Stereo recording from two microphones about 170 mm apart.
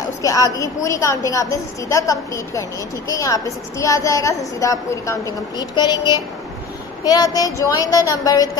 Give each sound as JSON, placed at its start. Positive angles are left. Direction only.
{"t": 0.2, "sound": "a woman's voice", "side_deg": 20}